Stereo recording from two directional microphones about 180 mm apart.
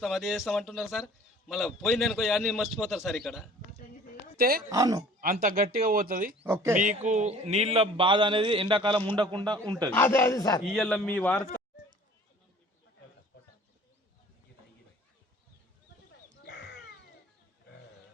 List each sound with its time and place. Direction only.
0.0 s a man's voice: centre (ahead or behind)
4.4 s speech: 55° right (ahead or behind)
4.7 s a man's voice: 20° right (ahead or behind)
5.2 s speech: 50° right (ahead or behind)
6.4 s speech: 15° right (ahead or behind)
6.7 s a man's voice: 45° right (ahead or behind); by 9.9 s 20° right (ahead or behind)
9.9 s speech: 10° left (ahead or behind)
10.6 s a man's voice: centre (ahead or behind)
13.3 s bird: 65° left (ahead or behind)